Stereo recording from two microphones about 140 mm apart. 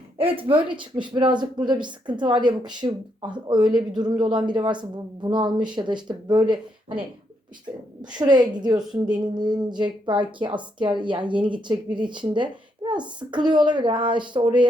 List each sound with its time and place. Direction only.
0.2 s speech: 40° right (ahead or behind)
8.1 s speech: 30° right (ahead or behind)